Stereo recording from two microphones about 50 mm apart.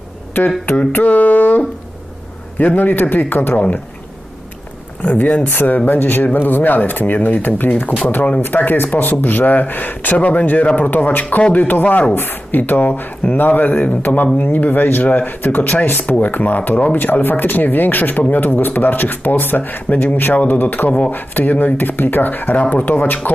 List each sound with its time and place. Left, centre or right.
0.4 s a sound: left
0.9 s speech: left
5.0 s speech: left